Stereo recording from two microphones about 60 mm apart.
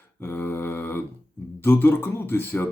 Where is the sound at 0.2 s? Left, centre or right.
Left.